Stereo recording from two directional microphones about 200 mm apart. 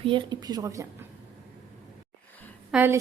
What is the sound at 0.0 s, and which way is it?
Speech, 25° right (ahead or behind).